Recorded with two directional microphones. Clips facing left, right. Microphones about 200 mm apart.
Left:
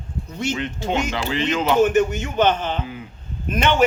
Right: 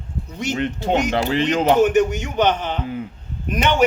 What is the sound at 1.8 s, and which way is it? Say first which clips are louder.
A man's voice: right 1 dB; 15° right (ahead or behind).